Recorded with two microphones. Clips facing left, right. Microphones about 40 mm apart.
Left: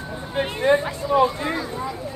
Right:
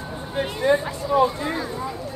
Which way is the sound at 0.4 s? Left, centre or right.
Left.